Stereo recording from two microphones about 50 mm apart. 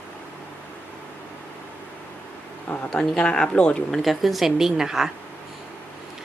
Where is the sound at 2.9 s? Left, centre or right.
Centre.